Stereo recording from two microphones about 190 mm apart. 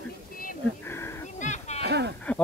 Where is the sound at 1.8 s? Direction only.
60° right (ahead or behind).